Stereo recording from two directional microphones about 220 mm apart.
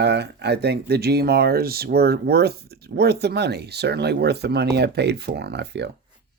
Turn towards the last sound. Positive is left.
turn(degrees=-50)  # may be behind; listen again after turning